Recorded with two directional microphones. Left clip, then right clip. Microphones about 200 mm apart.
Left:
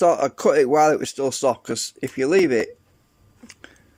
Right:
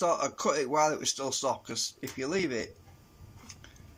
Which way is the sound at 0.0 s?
45° left (ahead or behind).